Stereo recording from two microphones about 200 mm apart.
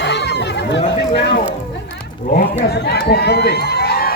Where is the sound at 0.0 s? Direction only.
60° left (ahead or behind).